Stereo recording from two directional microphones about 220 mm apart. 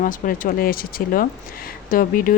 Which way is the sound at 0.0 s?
40° left (ahead or behind).